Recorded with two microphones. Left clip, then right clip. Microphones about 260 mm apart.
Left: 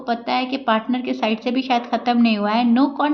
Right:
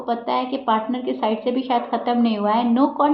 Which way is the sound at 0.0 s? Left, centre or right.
Left.